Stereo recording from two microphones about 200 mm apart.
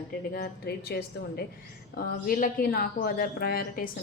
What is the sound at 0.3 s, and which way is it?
Speech, 50° left (ahead or behind).